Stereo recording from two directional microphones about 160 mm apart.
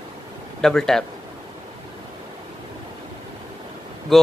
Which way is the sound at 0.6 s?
5° left (ahead or behind).